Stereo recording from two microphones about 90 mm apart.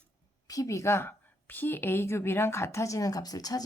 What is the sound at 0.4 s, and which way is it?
Speech, 40° left (ahead or behind).